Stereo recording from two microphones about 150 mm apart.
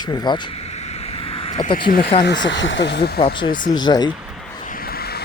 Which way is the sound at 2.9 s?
90° left.